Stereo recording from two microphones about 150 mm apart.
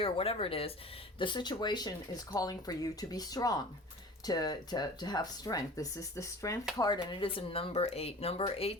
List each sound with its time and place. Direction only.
0.0 s speech: 40° left (ahead or behind)